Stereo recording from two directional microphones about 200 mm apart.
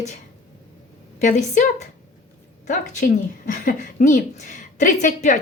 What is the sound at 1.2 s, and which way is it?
Speech, 35° left (ahead or behind).